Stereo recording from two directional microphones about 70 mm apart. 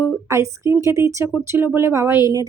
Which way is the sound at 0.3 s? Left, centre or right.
Right.